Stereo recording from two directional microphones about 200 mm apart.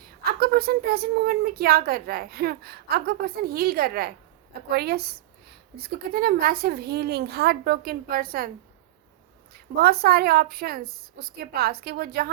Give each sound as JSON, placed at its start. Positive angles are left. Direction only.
{"t": 0.3, "sound": "a woman's voice", "side_deg": -50}
{"t": 9.5, "sound": "a woman's voice", "side_deg": -50}